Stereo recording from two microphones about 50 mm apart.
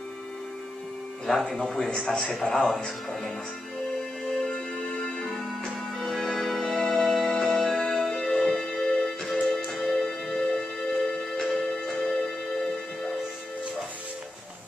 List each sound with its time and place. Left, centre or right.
1.5 s a man's voice: centre
2.4 s speech: centre
4.3 s music: centre